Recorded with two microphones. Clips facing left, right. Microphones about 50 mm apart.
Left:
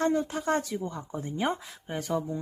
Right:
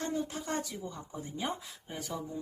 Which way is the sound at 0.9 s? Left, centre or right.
Left.